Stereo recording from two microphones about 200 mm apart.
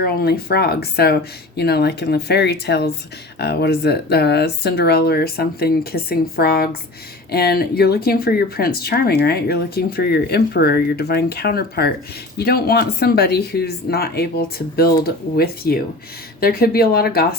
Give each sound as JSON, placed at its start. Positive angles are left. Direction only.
{"t": 0.0, "sound": "speech", "side_deg": 50}